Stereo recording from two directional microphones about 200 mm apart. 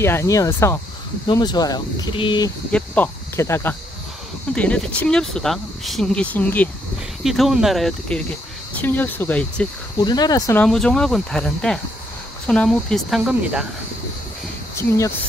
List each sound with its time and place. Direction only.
0.0 s speech: 15° left (ahead or behind)
2.7 s speech: 10° left (ahead or behind)
9.9 s speech: 20° left (ahead or behind)
10.6 s speech: 5° left (ahead or behind)
14.8 s speech: 15° left (ahead or behind)